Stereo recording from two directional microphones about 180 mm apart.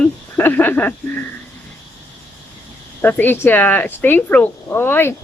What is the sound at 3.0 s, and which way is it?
Speech, 10° left (ahead or behind).